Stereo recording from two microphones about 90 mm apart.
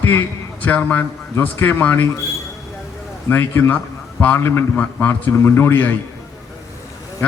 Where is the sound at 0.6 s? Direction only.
20° left (ahead or behind).